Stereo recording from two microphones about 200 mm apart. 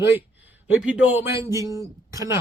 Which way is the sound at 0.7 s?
5° right (ahead or behind).